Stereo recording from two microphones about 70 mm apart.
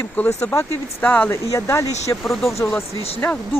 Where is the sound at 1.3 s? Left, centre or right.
Left.